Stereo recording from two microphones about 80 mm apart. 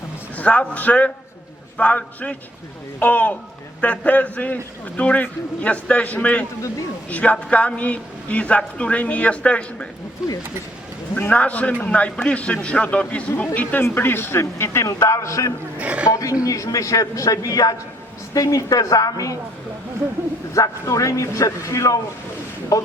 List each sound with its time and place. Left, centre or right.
0.3 s a man's voice: centre
10.2 s speech: centre
11.3 s speech: centre; by 15.5 s left
15.8 s speech: centre
16.1 s a man's voice: left
20.5 s a man's voice: left